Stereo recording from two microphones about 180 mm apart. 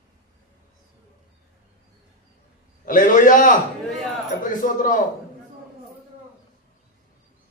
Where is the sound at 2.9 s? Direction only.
50° left (ahead or behind).